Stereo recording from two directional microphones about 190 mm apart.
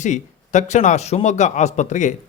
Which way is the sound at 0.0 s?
40° left (ahead or behind).